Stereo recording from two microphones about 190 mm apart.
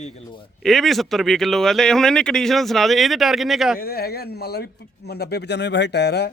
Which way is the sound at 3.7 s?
50° left (ahead or behind).